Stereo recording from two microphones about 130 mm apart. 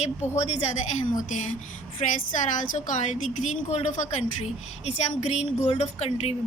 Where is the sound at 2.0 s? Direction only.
60° left (ahead or behind).